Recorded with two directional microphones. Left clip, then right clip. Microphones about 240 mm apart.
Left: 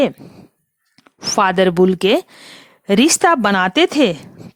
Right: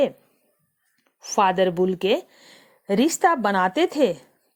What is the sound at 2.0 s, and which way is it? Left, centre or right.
Speech, left.